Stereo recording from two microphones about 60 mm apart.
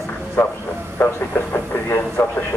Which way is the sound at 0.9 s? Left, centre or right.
Left.